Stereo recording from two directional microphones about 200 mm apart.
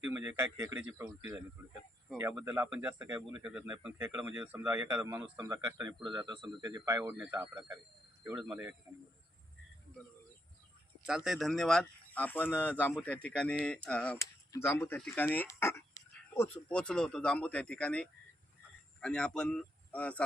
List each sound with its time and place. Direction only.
0.0 s speech: 10° right (ahead or behind)
8.2 s speech: 5° right (ahead or behind)
11.0 s speech: centre (ahead or behind)